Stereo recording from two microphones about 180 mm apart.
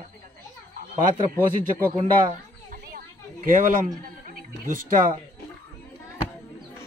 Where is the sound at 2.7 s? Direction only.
45° right (ahead or behind).